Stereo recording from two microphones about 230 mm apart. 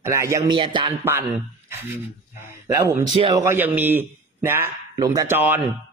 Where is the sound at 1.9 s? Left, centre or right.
Centre.